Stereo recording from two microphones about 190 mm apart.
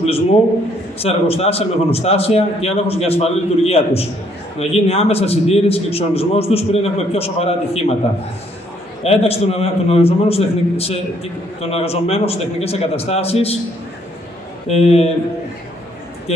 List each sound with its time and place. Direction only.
0.0 s a man's voice: 30° left (ahead or behind)
9.0 s a man's voice: 30° left (ahead or behind)
14.7 s a man's voice: 35° left (ahead or behind)